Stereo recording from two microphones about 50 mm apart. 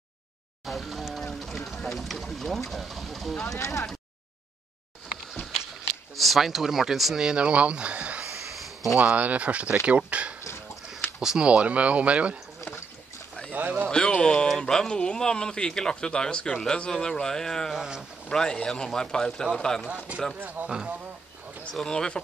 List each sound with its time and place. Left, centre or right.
0.7 s speech: centre
3.5 s speech: left
6.1 s speech: centre
7.2 s speech: centre
13.5 s speech: right
13.8 s a sound: centre
14.7 s speech: centre
17.7 s speech: centre
18.3 s speech: centre
20.6 s speech: centre
21.8 s speech: centre